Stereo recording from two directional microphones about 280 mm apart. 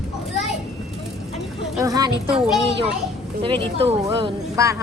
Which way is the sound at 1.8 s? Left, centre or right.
Centre.